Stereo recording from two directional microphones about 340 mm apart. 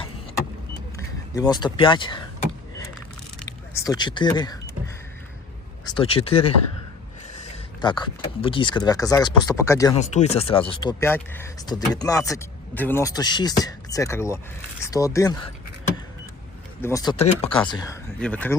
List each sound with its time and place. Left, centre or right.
0.9 s speech: centre
3.8 s speech: centre
5.8 s speech: centre
7.8 s speech: centre
16.8 s speech: centre